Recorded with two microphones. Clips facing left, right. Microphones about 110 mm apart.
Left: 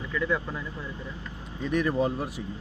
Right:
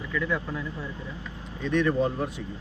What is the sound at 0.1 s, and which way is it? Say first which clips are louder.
Speech: left 1 dB; 10° left (ahead or behind).